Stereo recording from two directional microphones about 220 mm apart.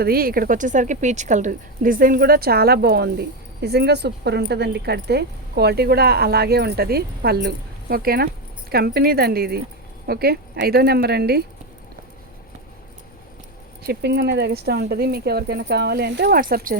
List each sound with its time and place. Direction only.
0.0 s speech: 45° right (ahead or behind)
13.8 s speech: 50° right (ahead or behind)